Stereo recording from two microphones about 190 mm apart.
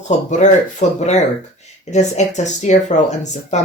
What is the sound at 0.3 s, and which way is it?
Speech, 40° left (ahead or behind).